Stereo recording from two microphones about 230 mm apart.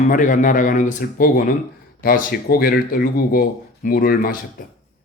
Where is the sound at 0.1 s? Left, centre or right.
Left.